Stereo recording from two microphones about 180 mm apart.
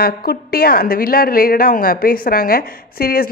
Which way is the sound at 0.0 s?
60° left (ahead or behind).